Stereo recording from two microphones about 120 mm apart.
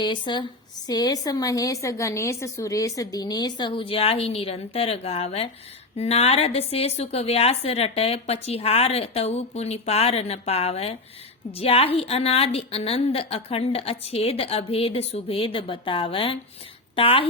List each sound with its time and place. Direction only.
0.0 s a woman's voice: 40° left (ahead or behind)